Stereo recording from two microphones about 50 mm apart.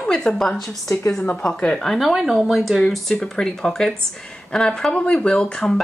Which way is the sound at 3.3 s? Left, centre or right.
Centre.